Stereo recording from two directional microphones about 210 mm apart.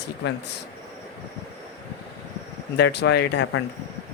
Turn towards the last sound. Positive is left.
turn(degrees=60)  # may be behind; listen again after turning